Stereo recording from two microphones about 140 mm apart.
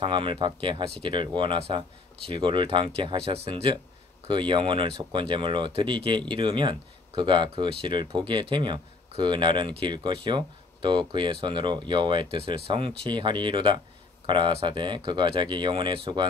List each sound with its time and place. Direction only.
0.0 s speech: 40° right (ahead or behind)